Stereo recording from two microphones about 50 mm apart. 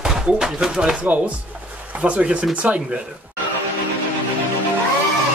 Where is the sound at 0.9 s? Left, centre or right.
Right.